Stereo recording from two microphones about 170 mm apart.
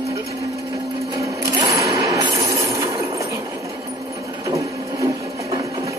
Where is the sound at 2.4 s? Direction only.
20° right (ahead or behind).